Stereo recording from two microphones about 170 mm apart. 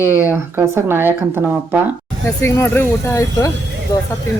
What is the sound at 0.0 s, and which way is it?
Speech, 10° right (ahead or behind).